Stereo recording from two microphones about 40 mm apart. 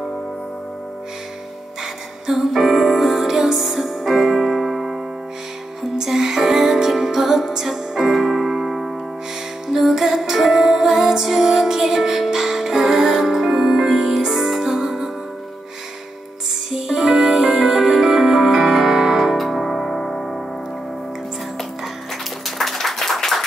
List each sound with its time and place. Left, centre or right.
2.2 s music: centre
16.7 s music: centre
22.6 s applause: centre